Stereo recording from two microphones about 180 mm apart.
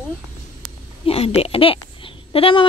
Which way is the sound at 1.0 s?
35° left (ahead or behind).